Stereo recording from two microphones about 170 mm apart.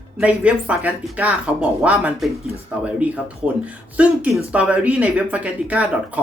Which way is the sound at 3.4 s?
5° right (ahead or behind).